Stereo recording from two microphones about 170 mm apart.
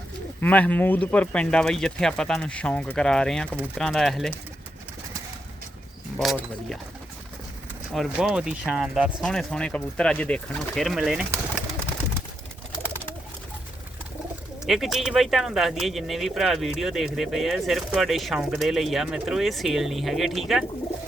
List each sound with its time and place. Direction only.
0.4 s speech: 10° left (ahead or behind)
6.1 s speech: 5° left (ahead or behind)
7.9 s speech: centre (ahead or behind)
14.6 s speech: centre (ahead or behind)